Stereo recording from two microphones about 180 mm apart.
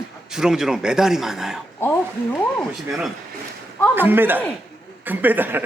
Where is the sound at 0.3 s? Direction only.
5° right (ahead or behind).